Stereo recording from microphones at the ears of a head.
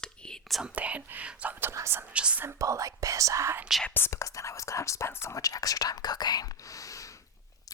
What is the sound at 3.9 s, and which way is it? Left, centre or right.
Speech, left.